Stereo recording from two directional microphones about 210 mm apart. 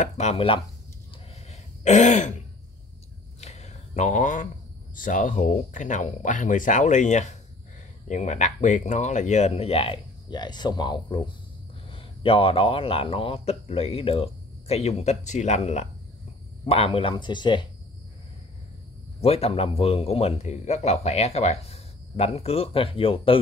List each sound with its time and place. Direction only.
0.0 s a man's voice: 30° left (ahead or behind)
1.3 s throat clearing: 30° left (ahead or behind)
3.3 s a sound: 30° left (ahead or behind)
4.9 s a man's voice: 40° left (ahead or behind); by 17.6 s 20° left (ahead or behind)
19.2 s a man's voice: 30° left (ahead or behind)